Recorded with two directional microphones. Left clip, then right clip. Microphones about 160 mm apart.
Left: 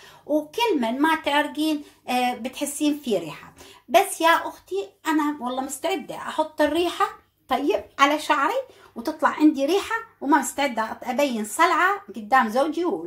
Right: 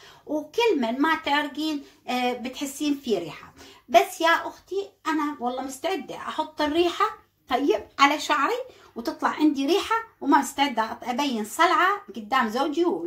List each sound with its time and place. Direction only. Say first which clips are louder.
0.3 s speech: left 1 dB; 20° left (ahead or behind)